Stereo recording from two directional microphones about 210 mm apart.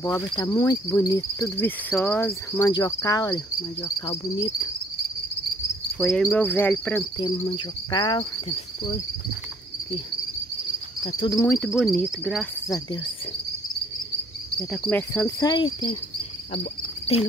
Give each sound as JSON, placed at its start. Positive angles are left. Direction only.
{"t": 0.0, "sound": "cricket", "side_deg": 20}
{"t": 5.9, "sound": "cricket", "side_deg": 0}
{"t": 7.2, "sound": "cricket", "side_deg": 20}
{"t": 11.1, "sound": "cricket", "side_deg": 20}
{"t": 12.6, "sound": "cricket", "side_deg": 20}
{"t": 14.6, "sound": "cricket", "side_deg": 5}